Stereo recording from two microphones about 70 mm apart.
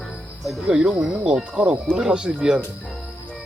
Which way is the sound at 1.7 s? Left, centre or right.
Centre.